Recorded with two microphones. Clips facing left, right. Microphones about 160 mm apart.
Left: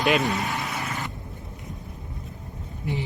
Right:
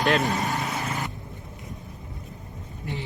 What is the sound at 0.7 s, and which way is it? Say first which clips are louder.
Vehicle: right 1 dB; 20° right (ahead or behind).